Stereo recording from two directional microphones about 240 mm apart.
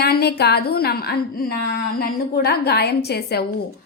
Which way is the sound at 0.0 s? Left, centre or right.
Left.